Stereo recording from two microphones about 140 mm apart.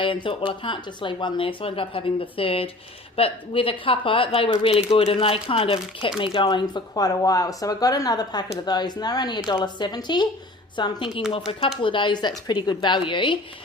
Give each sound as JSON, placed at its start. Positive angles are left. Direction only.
{"t": 0.0, "sound": "speech", "side_deg": 40}